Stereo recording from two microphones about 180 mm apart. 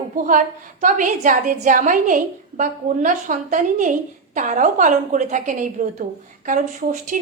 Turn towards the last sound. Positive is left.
turn(degrees=-45)  # may be behind; listen again after turning